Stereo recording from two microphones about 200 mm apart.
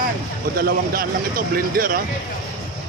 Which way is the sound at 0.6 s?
45° right (ahead or behind).